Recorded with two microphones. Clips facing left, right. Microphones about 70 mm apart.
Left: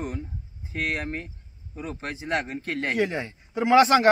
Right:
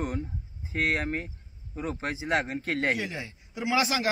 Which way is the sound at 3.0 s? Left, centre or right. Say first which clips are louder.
Left 9 dB; left.